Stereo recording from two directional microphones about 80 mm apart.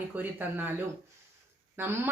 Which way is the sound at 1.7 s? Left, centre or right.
Right.